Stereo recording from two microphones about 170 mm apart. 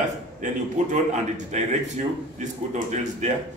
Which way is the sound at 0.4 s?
45° right (ahead or behind).